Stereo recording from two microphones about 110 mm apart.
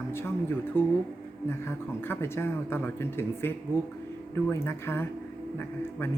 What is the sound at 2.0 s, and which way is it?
Speech, 20° left (ahead or behind).